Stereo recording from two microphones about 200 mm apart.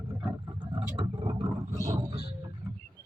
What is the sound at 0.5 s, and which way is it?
Vehicle, 25° right (ahead or behind).